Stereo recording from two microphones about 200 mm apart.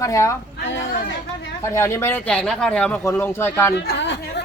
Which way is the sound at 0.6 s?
65° left (ahead or behind).